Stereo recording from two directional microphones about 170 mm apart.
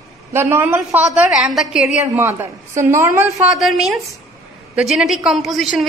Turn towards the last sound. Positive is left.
turn(degrees=0)  # may be behind; listen again after turning